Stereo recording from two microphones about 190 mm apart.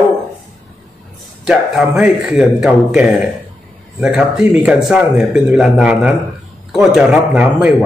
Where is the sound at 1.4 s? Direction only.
5° right (ahead or behind).